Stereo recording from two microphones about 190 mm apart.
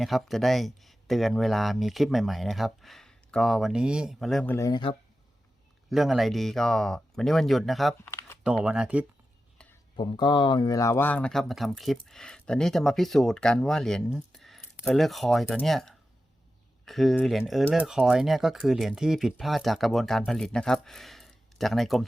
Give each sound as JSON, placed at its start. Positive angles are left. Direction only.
{"t": 0.0, "sound": "speech", "side_deg": 0}
{"t": 4.5, "sound": "speech", "side_deg": 20}
{"t": 5.9, "sound": "speech", "side_deg": 0}
{"t": 8.0, "sound": "crumpling", "side_deg": 10}
{"t": 8.6, "sound": "speech", "side_deg": -5}
{"t": 10.0, "sound": "speech", "side_deg": 25}